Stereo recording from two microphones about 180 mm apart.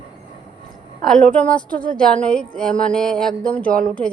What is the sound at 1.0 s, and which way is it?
A woman's voice, 5° left (ahead or behind).